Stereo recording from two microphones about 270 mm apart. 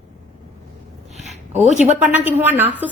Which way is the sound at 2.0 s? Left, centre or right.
Centre.